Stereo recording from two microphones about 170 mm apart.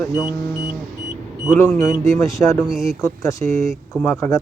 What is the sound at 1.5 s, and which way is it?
A man's voice, 15° left (ahead or behind).